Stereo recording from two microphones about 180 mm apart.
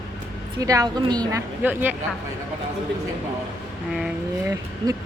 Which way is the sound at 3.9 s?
5° right (ahead or behind).